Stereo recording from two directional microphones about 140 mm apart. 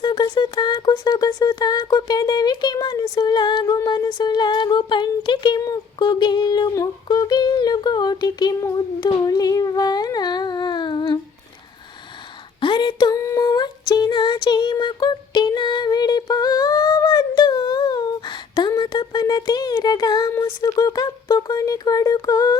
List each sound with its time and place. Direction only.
0.0 s female singing: 30° left (ahead or behind)
3.8 s a sound: 30° left (ahead or behind)
12.5 s female singing: 35° left (ahead or behind)